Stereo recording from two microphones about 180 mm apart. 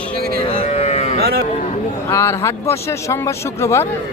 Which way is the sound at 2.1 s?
15° left (ahead or behind).